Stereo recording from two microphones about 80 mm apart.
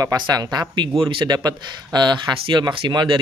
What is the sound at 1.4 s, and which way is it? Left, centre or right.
Speech, right.